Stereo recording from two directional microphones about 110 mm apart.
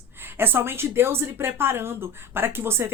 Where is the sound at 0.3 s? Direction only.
20° right (ahead or behind).